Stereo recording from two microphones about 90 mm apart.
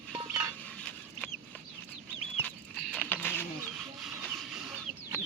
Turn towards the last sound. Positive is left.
turn(degrees=20)  # may be behind; listen again after turning